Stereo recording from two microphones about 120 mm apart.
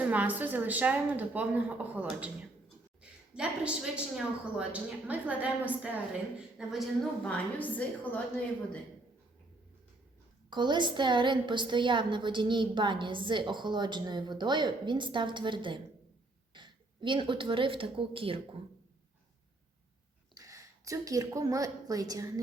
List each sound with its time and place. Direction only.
0.0 s a woman's voice: 15° right (ahead or behind)
7.3 s a woman's voice: 10° left (ahead or behind)
10.5 s a woman's voice: 40° right (ahead or behind)
20.3 s a woman's voice: 30° right (ahead or behind)